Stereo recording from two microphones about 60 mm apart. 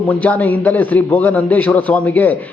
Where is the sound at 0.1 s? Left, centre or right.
Left.